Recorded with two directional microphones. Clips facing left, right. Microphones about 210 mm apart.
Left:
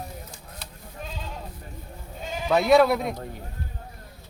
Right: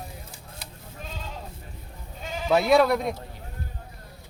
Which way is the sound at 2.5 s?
Centre (ahead or behind).